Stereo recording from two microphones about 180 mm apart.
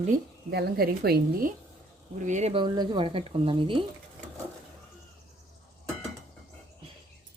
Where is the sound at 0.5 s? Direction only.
60° right (ahead or behind).